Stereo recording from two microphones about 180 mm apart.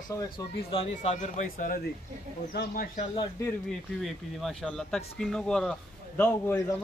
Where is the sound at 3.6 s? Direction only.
Centre (ahead or behind).